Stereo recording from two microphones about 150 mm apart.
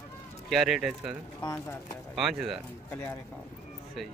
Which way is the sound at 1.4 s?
20° left (ahead or behind).